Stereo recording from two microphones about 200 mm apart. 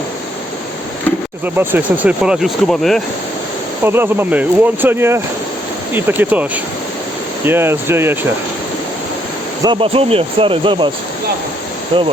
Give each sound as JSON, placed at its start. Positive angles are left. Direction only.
{"t": 1.5, "sound": "speech", "side_deg": -10}
{"t": 3.8, "sound": "speech", "side_deg": -10}
{"t": 9.6, "sound": "speech", "side_deg": -30}